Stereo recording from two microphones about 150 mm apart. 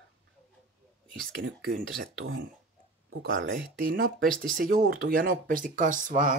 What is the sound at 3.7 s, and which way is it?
Speech, 70° right (ahead or behind).